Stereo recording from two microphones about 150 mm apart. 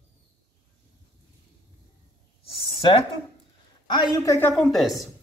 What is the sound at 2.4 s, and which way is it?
Speech, 35° left (ahead or behind).